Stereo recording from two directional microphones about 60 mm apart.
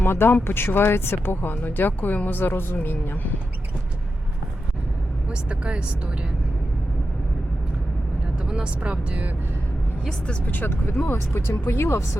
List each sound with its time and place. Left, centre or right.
0.0 s speech: left
5.3 s speech: centre
8.4 s speech: centre
10.4 s speech: left
11.0 s speech: left